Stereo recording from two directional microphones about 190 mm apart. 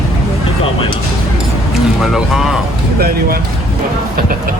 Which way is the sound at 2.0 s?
Centre (ahead or behind).